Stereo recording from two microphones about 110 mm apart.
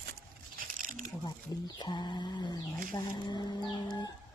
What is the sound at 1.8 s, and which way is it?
Speech, 45° left (ahead or behind).